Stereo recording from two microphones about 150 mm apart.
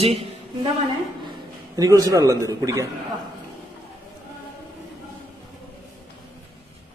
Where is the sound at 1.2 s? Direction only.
25° right (ahead or behind).